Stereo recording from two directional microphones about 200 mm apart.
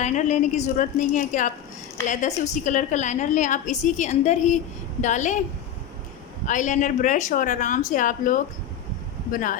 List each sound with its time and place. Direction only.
0.0 s a woman's voice: 35° left (ahead or behind)
6.4 s a woman's voice: 40° left (ahead or behind)